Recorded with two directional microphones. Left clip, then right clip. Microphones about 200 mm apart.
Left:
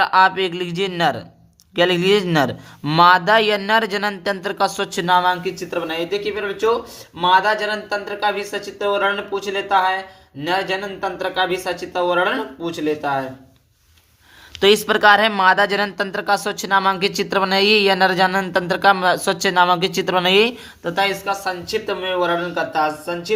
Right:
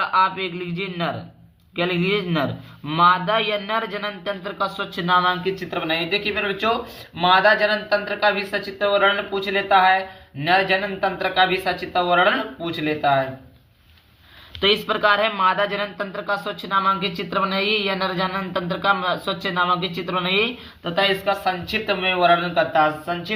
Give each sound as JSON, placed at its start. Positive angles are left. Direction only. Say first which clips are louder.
{"t": 0.0, "sound": "speech", "louder": "left 5 dB", "side_deg": 55}
{"t": 14.6, "sound": "speech", "louder": "left 5 dB", "side_deg": 45}
{"t": 20.8, "sound": "speech", "louder": "even", "side_deg": 30}